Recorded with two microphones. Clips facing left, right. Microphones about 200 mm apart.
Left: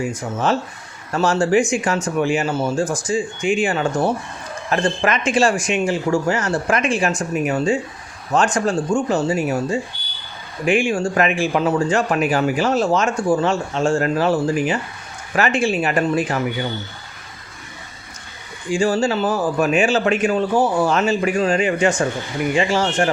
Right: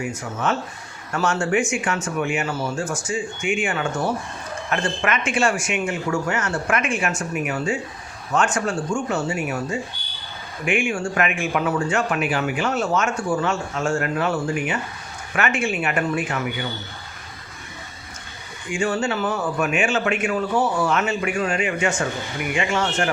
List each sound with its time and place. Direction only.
0.2 s speech: 30° left (ahead or behind)
18.7 s speech: 35° left (ahead or behind)